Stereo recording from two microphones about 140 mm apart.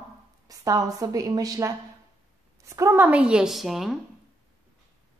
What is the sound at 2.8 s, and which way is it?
A woman's voice, 15° right (ahead or behind).